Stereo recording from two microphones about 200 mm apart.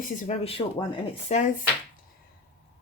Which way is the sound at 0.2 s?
30° left (ahead or behind).